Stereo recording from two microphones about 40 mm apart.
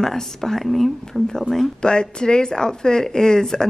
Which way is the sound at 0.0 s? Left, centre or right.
Centre.